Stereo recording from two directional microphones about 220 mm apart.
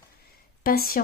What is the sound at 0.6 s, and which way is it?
Speech, 40° left (ahead or behind).